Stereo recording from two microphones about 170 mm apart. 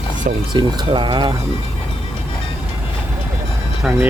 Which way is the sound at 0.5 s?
30° right (ahead or behind).